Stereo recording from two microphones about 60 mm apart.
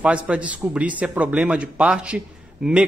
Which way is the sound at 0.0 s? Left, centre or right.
Centre.